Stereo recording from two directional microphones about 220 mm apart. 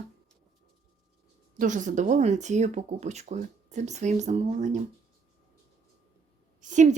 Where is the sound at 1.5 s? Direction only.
35° right (ahead or behind).